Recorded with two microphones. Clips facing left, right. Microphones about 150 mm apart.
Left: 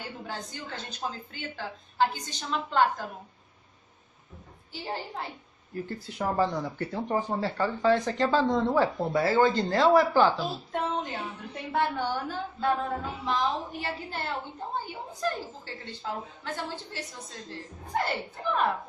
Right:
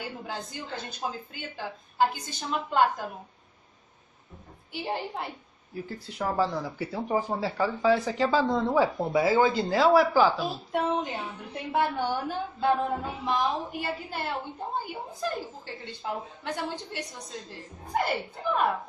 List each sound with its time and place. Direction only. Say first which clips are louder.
0.3 s a woman's voice: right 2 dB; 10° right (ahead or behind)
4.7 s speech: right 3 dB; 15° right (ahead or behind)
5.8 s speech: left 1 dB; centre (ahead or behind)